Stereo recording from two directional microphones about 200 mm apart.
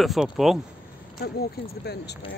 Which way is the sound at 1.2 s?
55° left (ahead or behind).